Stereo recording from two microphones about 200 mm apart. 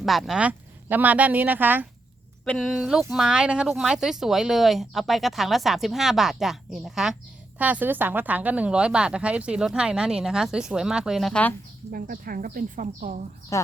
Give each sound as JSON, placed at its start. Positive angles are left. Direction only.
{"t": 0.0, "sound": "speech", "side_deg": 0}
{"t": 11.9, "sound": "speech", "side_deg": -45}
{"t": 13.5, "sound": "speech", "side_deg": 15}